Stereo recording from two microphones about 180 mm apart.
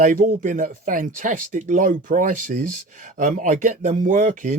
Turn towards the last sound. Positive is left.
turn(degrees=-45)  # may be behind; listen again after turning